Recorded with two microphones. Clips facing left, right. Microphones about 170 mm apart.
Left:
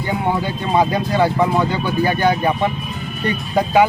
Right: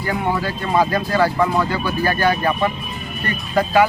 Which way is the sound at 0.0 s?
20° left (ahead or behind).